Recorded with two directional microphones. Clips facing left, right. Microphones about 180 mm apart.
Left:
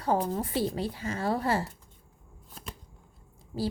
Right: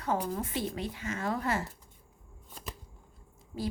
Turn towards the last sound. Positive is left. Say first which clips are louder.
# left 4 dB
turn(degrees=35)  # may be behind; listen again after turning